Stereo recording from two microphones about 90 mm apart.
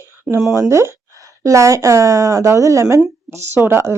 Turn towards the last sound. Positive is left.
turn(degrees=-30)  # may be behind; listen again after turning